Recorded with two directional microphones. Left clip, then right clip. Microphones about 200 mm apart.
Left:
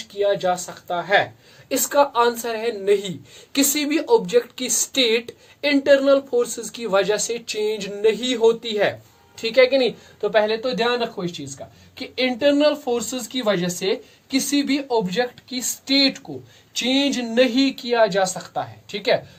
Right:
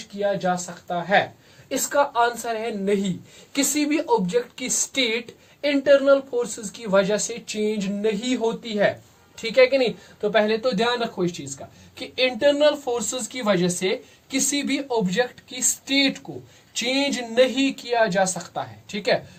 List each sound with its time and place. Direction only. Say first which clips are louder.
0.2 s speech: left 3 dB; 40° left (ahead or behind)